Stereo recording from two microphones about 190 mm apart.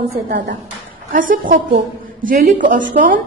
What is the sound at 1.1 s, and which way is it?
A woman's voice, 45° right (ahead or behind).